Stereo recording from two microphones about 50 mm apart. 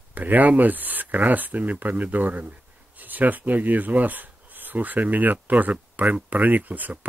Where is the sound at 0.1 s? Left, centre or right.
Right.